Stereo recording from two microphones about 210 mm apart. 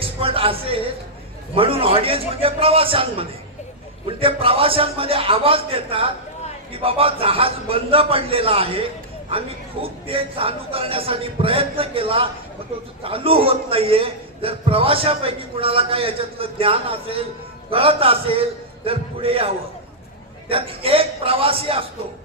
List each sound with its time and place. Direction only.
0.0 s a sound: 25° right (ahead or behind)
1.5 s a man's voice: 25° right (ahead or behind)
20.5 s a man's voice: 25° right (ahead or behind)